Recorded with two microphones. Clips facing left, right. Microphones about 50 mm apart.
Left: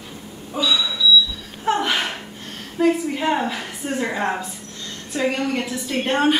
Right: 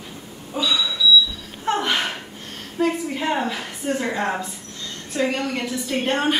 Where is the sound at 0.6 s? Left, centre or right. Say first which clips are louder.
Left 1 dB; centre.